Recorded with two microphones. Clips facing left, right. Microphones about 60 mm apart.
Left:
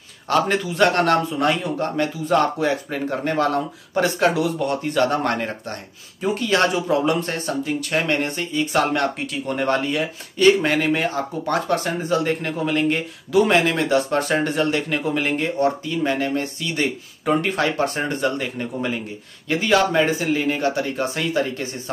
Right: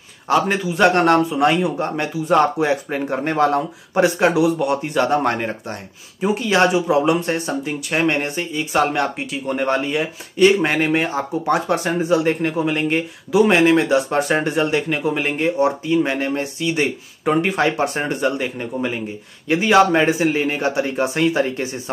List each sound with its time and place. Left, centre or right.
0.3 s a man's voice: centre; by 21.6 s right